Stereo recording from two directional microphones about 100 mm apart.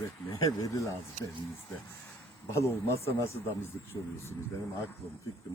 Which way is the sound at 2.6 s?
25° left (ahead or behind).